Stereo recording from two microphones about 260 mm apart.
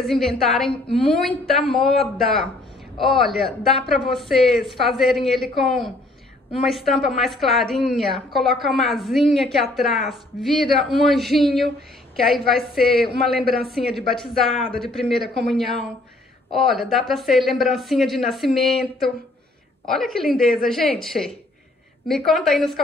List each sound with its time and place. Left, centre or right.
0.0 s a woman's voice: centre
13.5 s a woman's voice: right
13.9 s a woman's voice: centre